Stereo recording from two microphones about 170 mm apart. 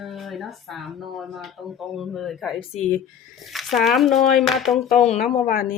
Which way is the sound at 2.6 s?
45° left (ahead or behind).